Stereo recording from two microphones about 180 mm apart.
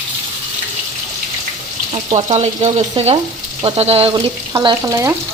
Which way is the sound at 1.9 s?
35° right (ahead or behind).